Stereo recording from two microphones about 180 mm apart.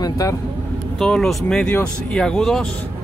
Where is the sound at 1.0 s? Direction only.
Centre (ahead or behind).